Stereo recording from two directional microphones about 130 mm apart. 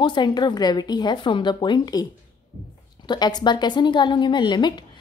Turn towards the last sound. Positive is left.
turn(degrees=35)  # may be behind; listen again after turning